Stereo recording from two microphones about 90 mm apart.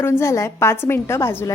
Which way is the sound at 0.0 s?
30° left (ahead or behind).